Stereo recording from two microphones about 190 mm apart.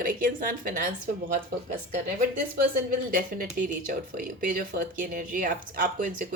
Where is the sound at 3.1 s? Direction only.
45° right (ahead or behind).